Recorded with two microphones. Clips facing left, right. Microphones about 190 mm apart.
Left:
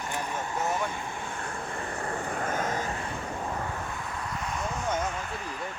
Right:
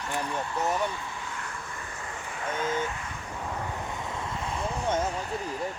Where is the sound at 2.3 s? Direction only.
50° left (ahead or behind).